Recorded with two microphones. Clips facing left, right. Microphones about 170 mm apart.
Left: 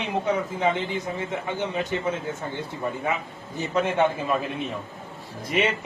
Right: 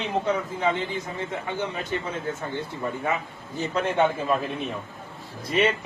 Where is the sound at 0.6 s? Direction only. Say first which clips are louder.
Left 1 dB; 15° left (ahead or behind).